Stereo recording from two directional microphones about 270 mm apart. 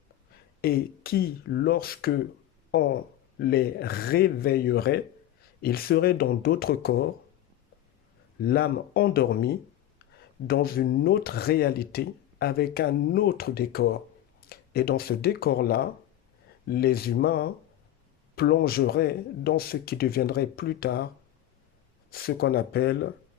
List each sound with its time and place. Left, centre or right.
0.6 s speech: left
8.4 s speech: left
22.1 s speech: left